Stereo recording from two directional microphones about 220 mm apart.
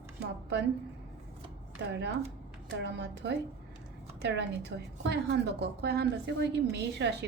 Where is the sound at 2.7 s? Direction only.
55° right (ahead or behind).